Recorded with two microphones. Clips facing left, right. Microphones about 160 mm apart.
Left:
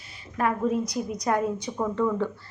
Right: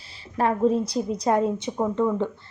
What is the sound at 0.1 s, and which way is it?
A woman's voice, 30° right (ahead or behind).